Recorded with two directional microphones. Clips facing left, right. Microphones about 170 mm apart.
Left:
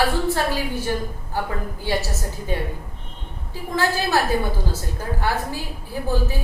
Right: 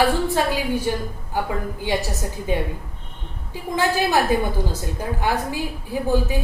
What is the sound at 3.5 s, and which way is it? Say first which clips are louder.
A woman's voice: right 1 dB; 15° right (ahead or behind).